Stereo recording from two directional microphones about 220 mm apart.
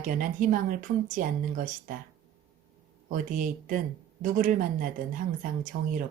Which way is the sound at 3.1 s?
35° right (ahead or behind).